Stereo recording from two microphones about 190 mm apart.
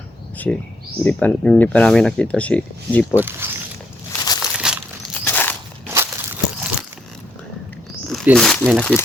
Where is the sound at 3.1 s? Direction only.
10° right (ahead or behind).